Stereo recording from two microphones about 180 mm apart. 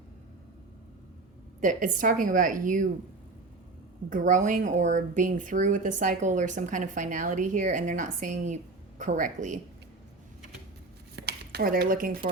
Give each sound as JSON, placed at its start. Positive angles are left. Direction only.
{"t": 1.6, "sound": "a woman's voice", "side_deg": -45}
{"t": 4.1, "sound": "a woman's voice", "side_deg": -45}
{"t": 11.2, "sound": "a sound", "side_deg": -65}